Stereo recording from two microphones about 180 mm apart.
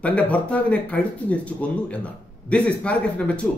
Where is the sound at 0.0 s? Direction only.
5° left (ahead or behind).